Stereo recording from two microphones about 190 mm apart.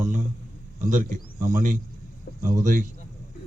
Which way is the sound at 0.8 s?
40° right (ahead or behind).